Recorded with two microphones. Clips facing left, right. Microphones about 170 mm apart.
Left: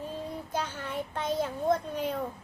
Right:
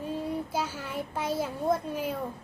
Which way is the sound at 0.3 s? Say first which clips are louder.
Right 3 dB; 5° right (ahead or behind).